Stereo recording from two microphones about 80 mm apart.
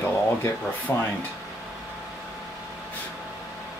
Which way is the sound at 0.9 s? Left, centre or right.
Left.